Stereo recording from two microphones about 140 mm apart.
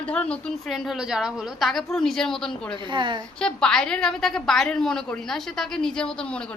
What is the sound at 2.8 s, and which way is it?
Speech, 35° right (ahead or behind).